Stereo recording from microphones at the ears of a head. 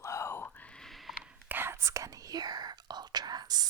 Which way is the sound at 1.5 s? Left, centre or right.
Right.